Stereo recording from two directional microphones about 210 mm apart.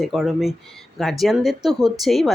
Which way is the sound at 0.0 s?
Centre (ahead or behind).